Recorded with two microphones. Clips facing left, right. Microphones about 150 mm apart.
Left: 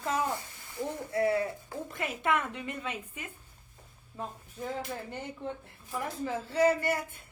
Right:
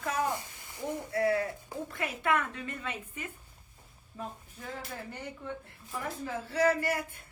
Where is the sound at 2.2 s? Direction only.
15° left (ahead or behind).